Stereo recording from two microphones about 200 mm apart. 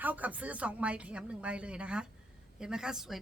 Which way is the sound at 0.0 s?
10° right (ahead or behind).